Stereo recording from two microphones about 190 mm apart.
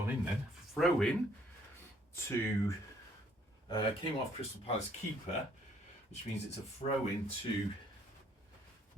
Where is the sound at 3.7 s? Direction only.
25° left (ahead or behind).